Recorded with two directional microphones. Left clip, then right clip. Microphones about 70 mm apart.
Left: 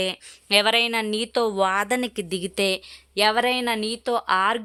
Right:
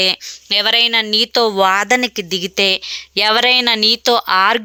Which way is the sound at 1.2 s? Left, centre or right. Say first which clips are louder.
Right 6 dB; right.